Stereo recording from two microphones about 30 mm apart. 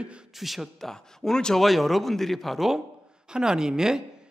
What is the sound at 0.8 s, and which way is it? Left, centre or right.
Speech, centre.